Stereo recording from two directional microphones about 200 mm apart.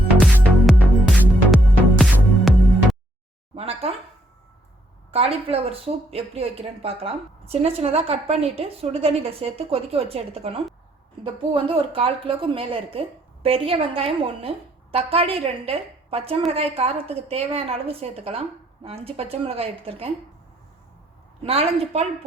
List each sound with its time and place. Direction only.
0.2 s music: centre (ahead or behind)
3.5 s a sound: 30° right (ahead or behind)
5.1 s a woman's voice: 30° right (ahead or behind)
21.4 s a woman's voice: 30° right (ahead or behind)